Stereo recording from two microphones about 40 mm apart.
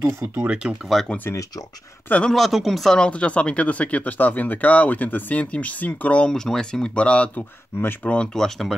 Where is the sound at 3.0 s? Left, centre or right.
Left.